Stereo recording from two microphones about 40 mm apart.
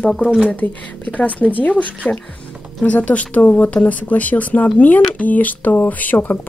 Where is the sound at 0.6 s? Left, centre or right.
Left.